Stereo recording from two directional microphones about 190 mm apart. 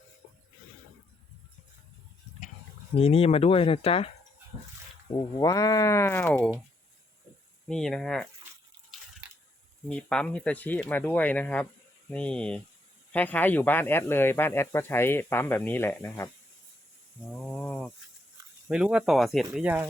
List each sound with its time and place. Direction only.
2.9 s speech: 30° left (ahead or behind)
5.1 s speech: 20° left (ahead or behind)
7.7 s speech: centre (ahead or behind)
8.9 s water: centre (ahead or behind)
9.9 s speech: 5° left (ahead or behind)
17.3 s a sound: 5° left (ahead or behind)
18.7 s speech: 5° right (ahead or behind)